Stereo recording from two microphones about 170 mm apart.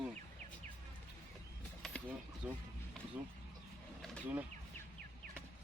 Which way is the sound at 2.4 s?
5° right (ahead or behind).